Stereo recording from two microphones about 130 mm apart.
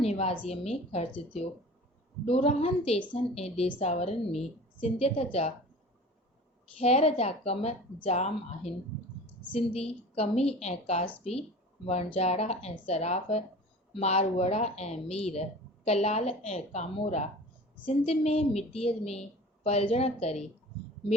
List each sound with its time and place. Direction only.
0.0 s a sound: 55° left (ahead or behind)
0.4 s a woman's voice: 50° left (ahead or behind)
2.2 s a woman's voice: 50° left (ahead or behind)
6.7 s a woman's voice: 50° left (ahead or behind)